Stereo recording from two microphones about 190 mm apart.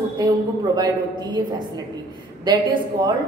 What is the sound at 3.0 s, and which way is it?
Speech, 25° right (ahead or behind).